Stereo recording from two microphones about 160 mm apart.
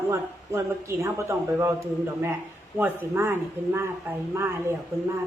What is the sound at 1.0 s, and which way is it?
Speech, 20° right (ahead or behind).